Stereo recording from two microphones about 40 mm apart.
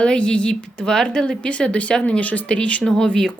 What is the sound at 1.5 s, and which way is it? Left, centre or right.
Speech, left.